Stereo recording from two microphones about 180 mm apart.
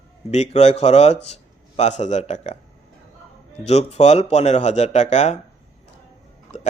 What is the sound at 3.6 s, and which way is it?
A man's voice, 35° left (ahead or behind).